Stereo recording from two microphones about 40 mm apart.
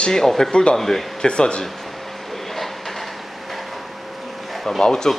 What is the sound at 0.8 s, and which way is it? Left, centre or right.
Speech, centre.